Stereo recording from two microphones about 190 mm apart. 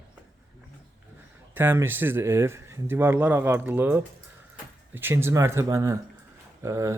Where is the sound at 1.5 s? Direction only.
10° right (ahead or behind).